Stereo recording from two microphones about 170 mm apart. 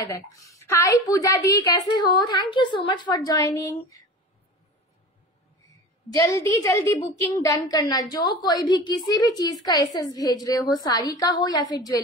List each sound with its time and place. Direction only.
0.0 s a woman's voice: 20° left (ahead or behind)
6.1 s a woman's voice: 20° left (ahead or behind)